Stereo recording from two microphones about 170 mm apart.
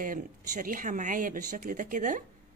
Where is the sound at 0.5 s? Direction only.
50° right (ahead or behind).